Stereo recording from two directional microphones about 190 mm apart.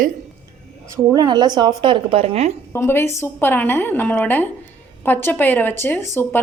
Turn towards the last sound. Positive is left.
turn(degrees=10)  # may be behind; listen again after turning